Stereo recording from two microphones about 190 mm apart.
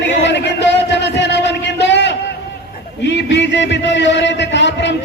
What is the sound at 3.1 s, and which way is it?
A man's voice, 65° left (ahead or behind).